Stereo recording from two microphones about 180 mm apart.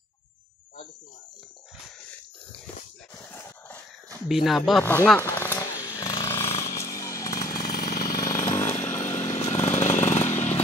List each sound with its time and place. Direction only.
3.3 s a sound: 15° left (ahead or behind)
4.3 s speech: centre (ahead or behind)
4.8 s a sound: 10° left (ahead or behind)
6.6 s chainsaw: 20° left (ahead or behind)
7.6 s vehicle: 50° left (ahead or behind)
8.3 s chainsaw: 15° left (ahead or behind)
9.2 s chainsaw: 35° left (ahead or behind)